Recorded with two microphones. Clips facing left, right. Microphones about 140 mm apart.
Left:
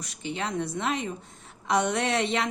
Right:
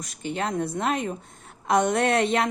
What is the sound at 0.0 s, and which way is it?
Speech, 45° right (ahead or behind).